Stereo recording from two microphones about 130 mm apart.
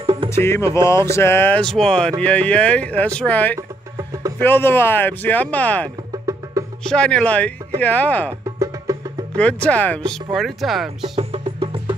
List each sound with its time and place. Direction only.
0.0 s music: 45° right (ahead or behind)
0.3 s music: 20° left (ahead or behind)
0.8 s a sound: 20° left (ahead or behind)
1.6 s speech: 5° left (ahead or behind)
10.3 s speech: centre (ahead or behind)
11.1 s music: 45° right (ahead or behind)